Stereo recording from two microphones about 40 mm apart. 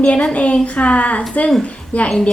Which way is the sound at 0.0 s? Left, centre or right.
Left.